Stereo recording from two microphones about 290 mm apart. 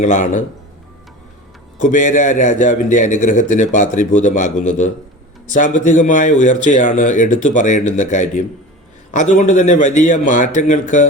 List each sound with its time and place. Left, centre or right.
0.0 s a man's voice: left
1.8 s a man's voice: left